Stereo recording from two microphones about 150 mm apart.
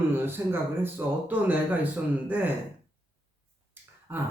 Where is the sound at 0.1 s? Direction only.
15° right (ahead or behind).